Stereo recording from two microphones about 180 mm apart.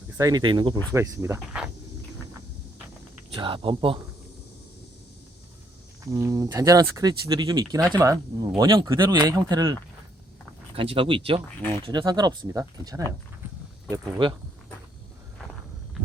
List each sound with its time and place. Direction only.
0.2 s speech: 20° right (ahead or behind)
3.2 s speech: 30° right (ahead or behind)
6.1 s speech: 15° right (ahead or behind)
10.8 s speech: 30° right (ahead or behind)